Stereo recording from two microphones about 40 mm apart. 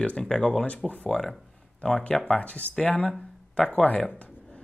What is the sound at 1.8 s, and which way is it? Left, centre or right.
Speech, left.